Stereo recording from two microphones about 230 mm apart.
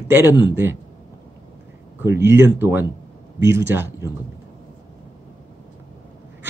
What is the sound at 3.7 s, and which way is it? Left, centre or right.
Speech, centre.